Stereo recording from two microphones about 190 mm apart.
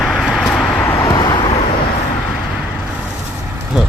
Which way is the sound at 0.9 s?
20° left (ahead or behind).